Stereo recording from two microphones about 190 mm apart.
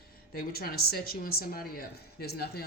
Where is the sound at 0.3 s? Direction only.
50° left (ahead or behind).